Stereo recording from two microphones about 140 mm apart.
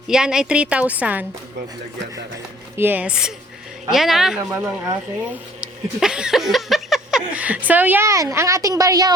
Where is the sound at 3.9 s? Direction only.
Centre (ahead or behind).